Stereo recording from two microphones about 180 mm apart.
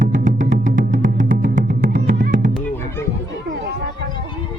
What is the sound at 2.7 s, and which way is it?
Music, 15° left (ahead or behind).